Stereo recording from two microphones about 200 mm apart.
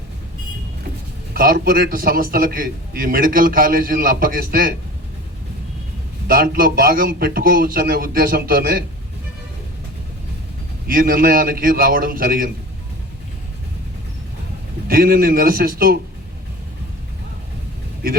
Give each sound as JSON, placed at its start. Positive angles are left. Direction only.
{"t": 1.3, "sound": "a man's voice", "side_deg": -50}
{"t": 6.2, "sound": "a man's voice", "side_deg": -45}
{"t": 10.8, "sound": "a man's voice", "side_deg": -45}
{"t": 14.8, "sound": "a man's voice", "side_deg": -50}